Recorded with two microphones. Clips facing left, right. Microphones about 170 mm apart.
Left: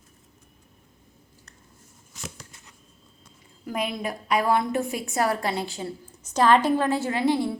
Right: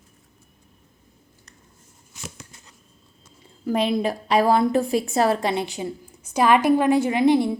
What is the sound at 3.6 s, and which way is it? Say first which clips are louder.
A woman's voice: right 7 dB; 30° right (ahead or behind).